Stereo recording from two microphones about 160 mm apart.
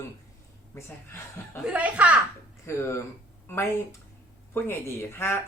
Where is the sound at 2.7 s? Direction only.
15° left (ahead or behind).